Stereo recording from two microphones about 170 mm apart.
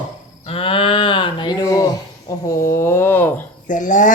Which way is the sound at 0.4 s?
35° left (ahead or behind).